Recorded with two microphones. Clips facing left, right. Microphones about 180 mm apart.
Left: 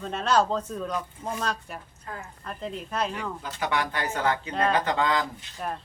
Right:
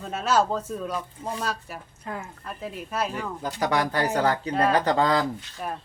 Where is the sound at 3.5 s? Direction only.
40° right (ahead or behind).